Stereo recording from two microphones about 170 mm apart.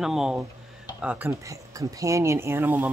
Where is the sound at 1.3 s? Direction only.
20° right (ahead or behind).